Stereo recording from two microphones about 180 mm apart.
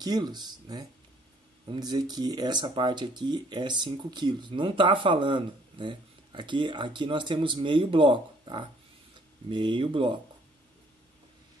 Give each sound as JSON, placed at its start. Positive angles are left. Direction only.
{"t": 0.0, "sound": "speech", "side_deg": -20}